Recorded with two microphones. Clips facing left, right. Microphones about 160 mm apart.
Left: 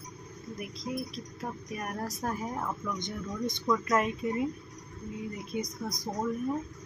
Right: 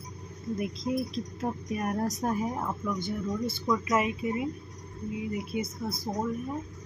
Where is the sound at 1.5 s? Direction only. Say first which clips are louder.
Right 6 dB; 20° right (ahead or behind); by 6.0 s 5° right (ahead or behind).